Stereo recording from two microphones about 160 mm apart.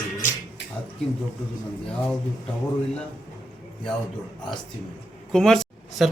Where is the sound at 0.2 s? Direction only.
50° left (ahead or behind).